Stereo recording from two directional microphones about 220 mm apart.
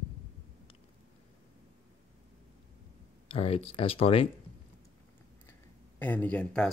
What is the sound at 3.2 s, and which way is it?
Speech, 25° left (ahead or behind).